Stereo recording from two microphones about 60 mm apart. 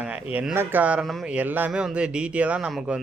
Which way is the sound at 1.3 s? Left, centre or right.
Right.